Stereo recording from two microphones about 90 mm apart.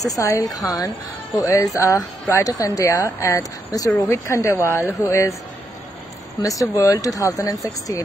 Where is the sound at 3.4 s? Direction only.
40° left (ahead or behind).